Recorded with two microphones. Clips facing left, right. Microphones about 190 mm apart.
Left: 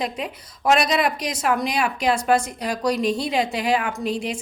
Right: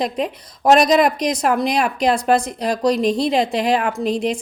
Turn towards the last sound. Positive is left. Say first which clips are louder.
# right 5 dB
turn(degrees=-40)  # may be behind; listen again after turning